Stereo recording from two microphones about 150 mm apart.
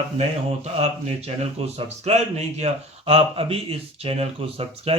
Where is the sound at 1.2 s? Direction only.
45° right (ahead or behind).